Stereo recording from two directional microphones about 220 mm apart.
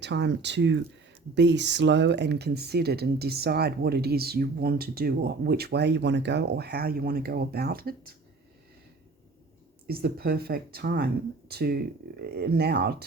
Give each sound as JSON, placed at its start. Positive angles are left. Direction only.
{"t": 0.0, "sound": "speech", "side_deg": -50}
{"t": 9.8, "sound": "speech", "side_deg": -45}